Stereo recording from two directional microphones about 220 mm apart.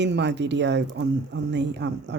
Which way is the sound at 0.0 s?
50° right (ahead or behind).